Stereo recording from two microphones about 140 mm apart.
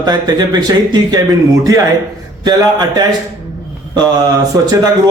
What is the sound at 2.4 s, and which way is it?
A man's voice, 30° right (ahead or behind).